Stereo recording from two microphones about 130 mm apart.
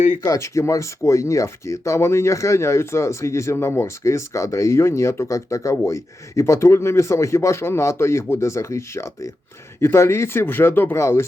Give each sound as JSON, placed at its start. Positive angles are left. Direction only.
{"t": 0.2, "sound": "speech", "side_deg": 25}